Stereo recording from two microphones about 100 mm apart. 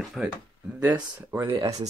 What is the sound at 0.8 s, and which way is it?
Speech, 15° right (ahead or behind).